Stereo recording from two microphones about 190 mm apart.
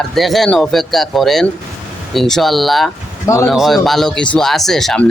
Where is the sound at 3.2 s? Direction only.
15° left (ahead or behind).